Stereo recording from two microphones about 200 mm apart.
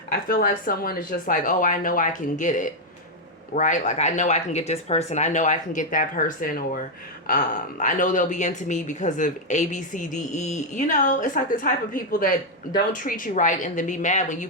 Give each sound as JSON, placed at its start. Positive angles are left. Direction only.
{"t": 0.1, "sound": "speech", "side_deg": 45}